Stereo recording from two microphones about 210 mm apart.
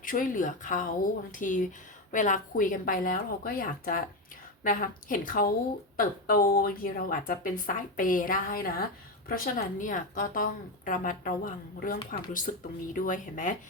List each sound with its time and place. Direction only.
0.0 s speech: 40° left (ahead or behind)